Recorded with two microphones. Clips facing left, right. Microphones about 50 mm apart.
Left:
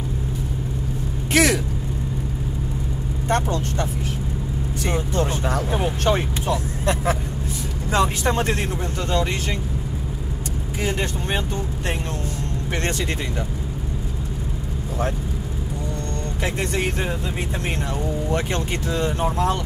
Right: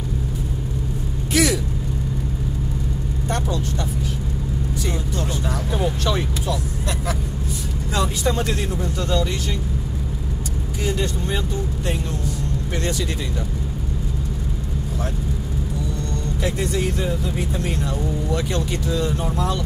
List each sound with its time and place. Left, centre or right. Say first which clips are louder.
1.3 s vehicle: left 1 dB; left
3.3 s speech: left 3 dB; left
4.8 s vehicle: left 7 dB; left
6.0 s speech: left 2 dB; left
10.9 s speech: right 2 dB; left
16.4 s speech: even; left
18.3 s speech: even; left